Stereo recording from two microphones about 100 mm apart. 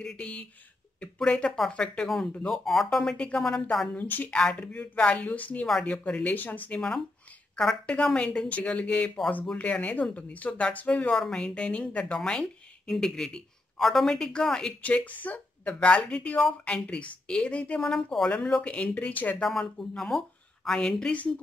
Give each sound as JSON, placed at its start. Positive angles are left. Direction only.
{"t": 0.0, "sound": "speech", "side_deg": 10}
{"t": 3.9, "sound": "speech", "side_deg": 15}
{"t": 4.4, "sound": "speech", "side_deg": 5}